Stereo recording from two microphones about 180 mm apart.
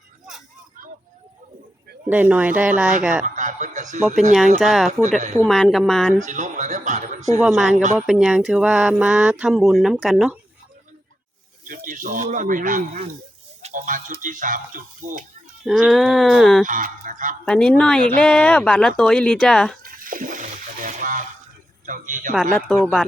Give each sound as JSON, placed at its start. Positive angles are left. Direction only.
{"t": 2.0, "sound": "speech", "side_deg": -10}
{"t": 3.2, "sound": "a sound", "side_deg": -45}
{"t": 4.6, "sound": "speech", "side_deg": 0}
{"t": 6.2, "sound": "speech", "side_deg": -40}
{"t": 7.4, "sound": "speech", "side_deg": 0}
{"t": 11.6, "sound": "speech", "side_deg": -50}
{"t": 13.6, "sound": "a sound", "side_deg": -45}
{"t": 14.2, "sound": "speech", "side_deg": -45}
{"t": 15.6, "sound": "speech", "side_deg": 0}
{"t": 16.6, "sound": "speech", "side_deg": -50}
{"t": 17.4, "sound": "speech", "side_deg": 5}
{"t": 19.8, "sound": "splash", "side_deg": -50}
{"t": 21.8, "sound": "speech", "side_deg": -45}
{"t": 22.5, "sound": "speech", "side_deg": 0}